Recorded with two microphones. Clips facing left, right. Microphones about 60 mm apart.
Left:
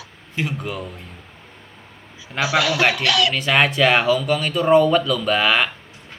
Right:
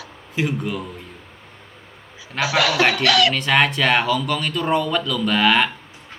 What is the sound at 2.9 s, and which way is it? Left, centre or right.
Speech, right.